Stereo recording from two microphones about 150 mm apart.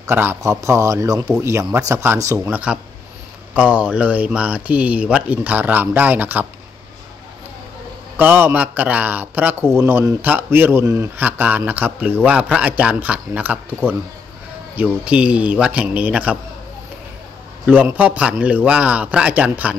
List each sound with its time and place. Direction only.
0.0 s a man's voice: 15° right (ahead or behind)
2.5 s a man's voice: 10° right (ahead or behind)
8.2 s a man's voice: 15° right (ahead or behind)
17.6 s a man's voice: 10° right (ahead or behind)